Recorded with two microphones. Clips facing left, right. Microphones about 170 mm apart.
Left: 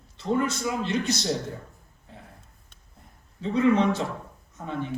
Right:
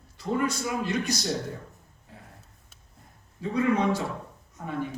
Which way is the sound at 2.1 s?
25° left (ahead or behind).